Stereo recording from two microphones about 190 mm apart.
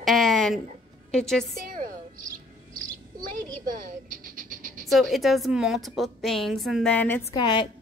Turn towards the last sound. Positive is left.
turn(degrees=25)  # may be behind; listen again after turning